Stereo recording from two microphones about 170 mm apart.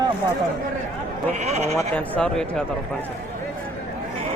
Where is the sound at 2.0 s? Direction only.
5° left (ahead or behind).